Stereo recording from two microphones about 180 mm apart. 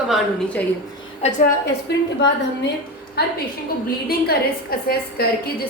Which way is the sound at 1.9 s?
65° left (ahead or behind).